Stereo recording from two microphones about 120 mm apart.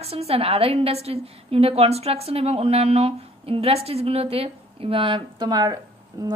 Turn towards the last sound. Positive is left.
turn(degrees=-30)  # may be behind; listen again after turning